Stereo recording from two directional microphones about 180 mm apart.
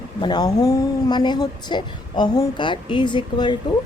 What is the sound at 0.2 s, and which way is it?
Speech, 25° left (ahead or behind).